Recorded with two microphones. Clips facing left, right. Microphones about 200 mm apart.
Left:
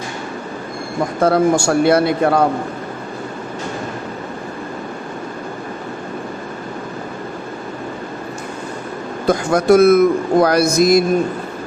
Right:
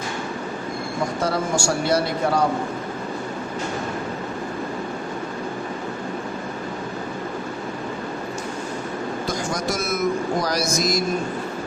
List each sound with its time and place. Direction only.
1.2 s a man's voice: 55° left (ahead or behind)
9.2 s a man's voice: 60° left (ahead or behind)